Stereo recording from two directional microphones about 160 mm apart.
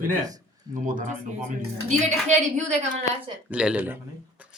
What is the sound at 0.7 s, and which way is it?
Speech, 55° right (ahead or behind).